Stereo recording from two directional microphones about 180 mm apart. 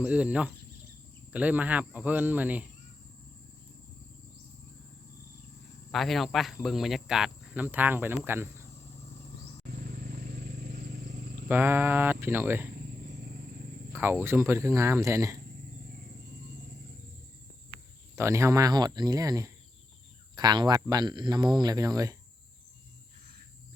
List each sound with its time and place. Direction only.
0.0 s speech: 5° right (ahead or behind)
5.9 s speech: centre (ahead or behind)
9.7 s vehicle: 60° right (ahead or behind)
11.4 s speech: 10° right (ahead or behind)
13.9 s speech: 10° right (ahead or behind)
18.2 s speech: 15° right (ahead or behind)